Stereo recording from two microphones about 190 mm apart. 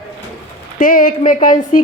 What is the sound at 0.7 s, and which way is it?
A woman's voice, 50° left (ahead or behind).